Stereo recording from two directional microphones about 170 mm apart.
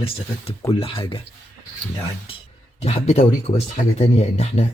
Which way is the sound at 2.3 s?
30° left (ahead or behind).